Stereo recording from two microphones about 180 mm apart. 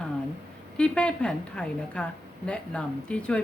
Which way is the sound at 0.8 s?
5° left (ahead or behind).